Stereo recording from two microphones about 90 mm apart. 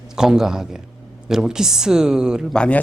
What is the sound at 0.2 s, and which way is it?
A man's voice, 5° right (ahead or behind).